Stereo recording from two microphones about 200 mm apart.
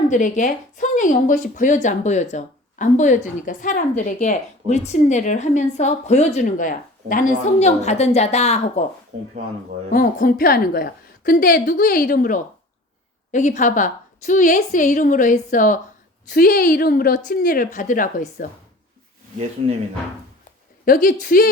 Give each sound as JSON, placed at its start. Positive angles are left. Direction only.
{"t": 0.1, "sound": "speech", "side_deg": 40}
{"t": 9.9, "sound": "a woman's voice", "side_deg": 45}
{"t": 19.6, "sound": "speech", "side_deg": -25}
{"t": 20.8, "sound": "a woman's voice", "side_deg": 45}